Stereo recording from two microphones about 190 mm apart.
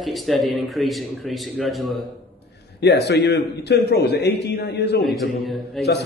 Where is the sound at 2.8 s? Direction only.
60° left (ahead or behind).